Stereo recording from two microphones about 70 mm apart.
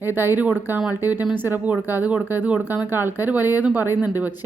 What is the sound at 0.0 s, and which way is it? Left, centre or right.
Speech, right.